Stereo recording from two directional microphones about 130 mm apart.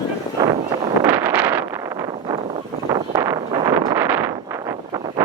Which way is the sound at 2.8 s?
35° right (ahead or behind).